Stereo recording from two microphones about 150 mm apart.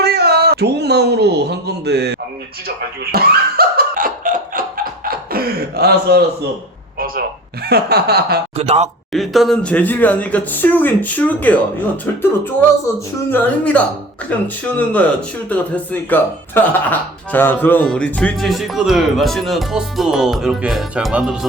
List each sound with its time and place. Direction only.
0.0 s speech: 90° right
8.5 s speech: 45° right (ahead or behind)
9.1 s speech: centre (ahead or behind)